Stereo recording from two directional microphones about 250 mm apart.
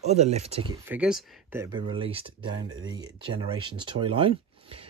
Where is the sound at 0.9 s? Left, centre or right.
Centre.